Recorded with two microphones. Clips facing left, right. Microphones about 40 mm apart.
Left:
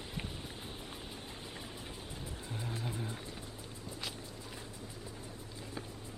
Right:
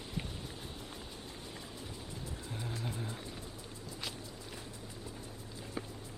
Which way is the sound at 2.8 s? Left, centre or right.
Centre.